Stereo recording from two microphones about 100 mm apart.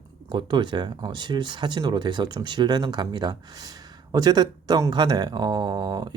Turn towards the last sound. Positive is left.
turn(degrees=-40)  # may be behind; listen again after turning